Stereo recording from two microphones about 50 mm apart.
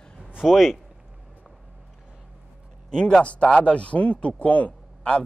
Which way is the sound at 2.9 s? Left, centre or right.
Centre.